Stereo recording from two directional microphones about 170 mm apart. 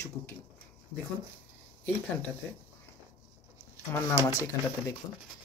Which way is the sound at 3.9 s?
15° left (ahead or behind).